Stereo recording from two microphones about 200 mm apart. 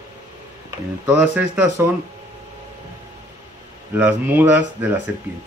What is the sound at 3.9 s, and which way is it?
Speech, 10° right (ahead or behind).